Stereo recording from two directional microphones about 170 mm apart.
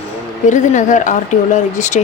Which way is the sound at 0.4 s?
45° left (ahead or behind).